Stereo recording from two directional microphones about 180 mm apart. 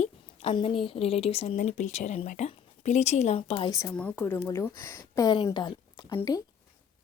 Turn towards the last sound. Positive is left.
turn(degrees=20)  # may be behind; listen again after turning